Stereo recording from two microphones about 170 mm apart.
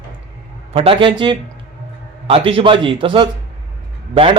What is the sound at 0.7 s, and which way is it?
A man's voice, 30° right (ahead or behind).